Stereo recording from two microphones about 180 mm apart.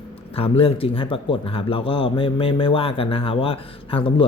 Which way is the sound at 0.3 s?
30° left (ahead or behind).